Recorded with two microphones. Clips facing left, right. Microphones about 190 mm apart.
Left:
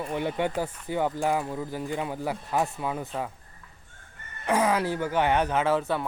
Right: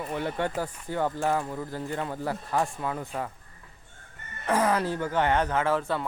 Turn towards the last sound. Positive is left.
turn(degrees=15)  # may be behind; listen again after turning